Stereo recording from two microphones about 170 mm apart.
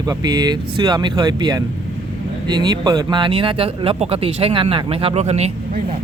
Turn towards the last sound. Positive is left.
turn(degrees=-40)  # may be behind; listen again after turning